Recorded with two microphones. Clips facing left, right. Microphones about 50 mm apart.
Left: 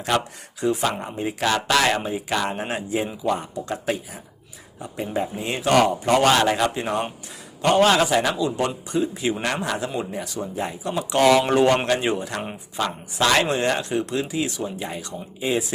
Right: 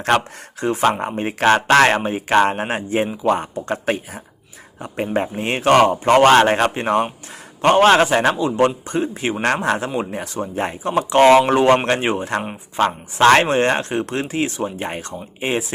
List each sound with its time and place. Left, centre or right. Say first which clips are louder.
0.1 s a man's voice: right 3 dB; right